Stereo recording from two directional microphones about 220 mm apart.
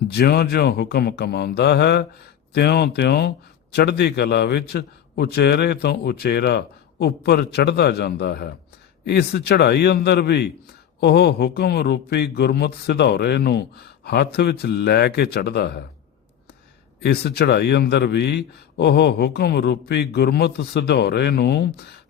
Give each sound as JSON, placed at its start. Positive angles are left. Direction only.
{"t": 0.1, "sound": "a man's voice", "side_deg": 45}
{"t": 17.0, "sound": "a man's voice", "side_deg": 50}